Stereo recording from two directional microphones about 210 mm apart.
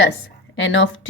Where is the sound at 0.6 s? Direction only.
65° left (ahead or behind).